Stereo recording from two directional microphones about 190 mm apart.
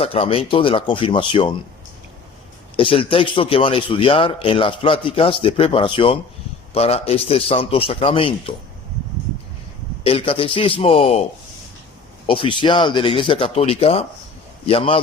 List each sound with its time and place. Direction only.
0.0 s a man's voice: 30° left (ahead or behind)
2.7 s a man's voice: 30° left (ahead or behind)
10.0 s a man's voice: 30° left (ahead or behind)